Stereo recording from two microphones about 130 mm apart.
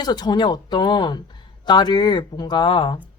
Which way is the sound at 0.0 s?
30° left (ahead or behind).